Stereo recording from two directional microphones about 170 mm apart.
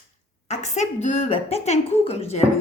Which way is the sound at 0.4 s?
45° left (ahead or behind).